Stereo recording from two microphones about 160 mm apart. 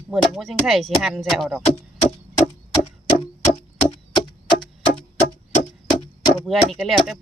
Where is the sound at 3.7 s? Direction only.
40° left (ahead or behind).